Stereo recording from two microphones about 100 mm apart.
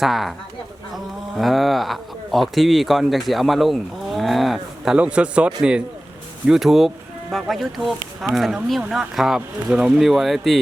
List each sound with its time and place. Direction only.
0.0 s speech: centre (ahead or behind)